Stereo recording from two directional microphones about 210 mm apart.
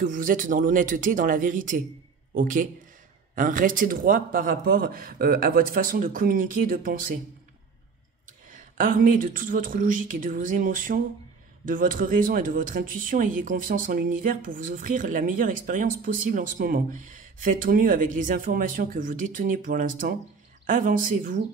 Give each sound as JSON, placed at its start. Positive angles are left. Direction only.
{"t": 0.0, "sound": "speech", "side_deg": -40}
{"t": 8.5, "sound": "speech", "side_deg": -40}